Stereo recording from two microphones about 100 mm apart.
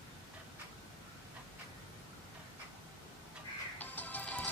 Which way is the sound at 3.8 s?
15° left (ahead or behind).